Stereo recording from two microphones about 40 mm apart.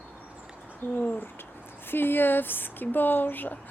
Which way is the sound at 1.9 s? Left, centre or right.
Left.